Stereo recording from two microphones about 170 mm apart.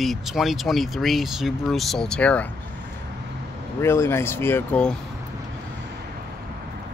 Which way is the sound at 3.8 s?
15° left (ahead or behind).